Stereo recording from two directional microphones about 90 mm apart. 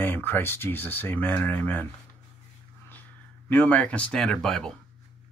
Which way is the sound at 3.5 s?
20° left (ahead or behind).